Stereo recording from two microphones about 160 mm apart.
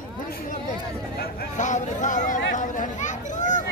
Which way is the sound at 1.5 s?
50° left (ahead or behind).